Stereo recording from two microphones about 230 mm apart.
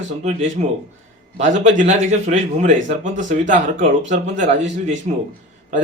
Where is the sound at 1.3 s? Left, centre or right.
Right.